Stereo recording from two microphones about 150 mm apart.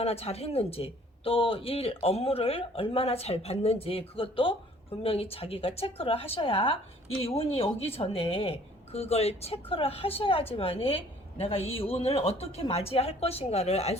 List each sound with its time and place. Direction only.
0.0 s speech: 40° left (ahead or behind)